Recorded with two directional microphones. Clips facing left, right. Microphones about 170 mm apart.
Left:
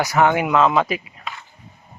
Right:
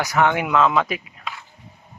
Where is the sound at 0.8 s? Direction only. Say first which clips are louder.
Left 3 dB; centre (ahead or behind).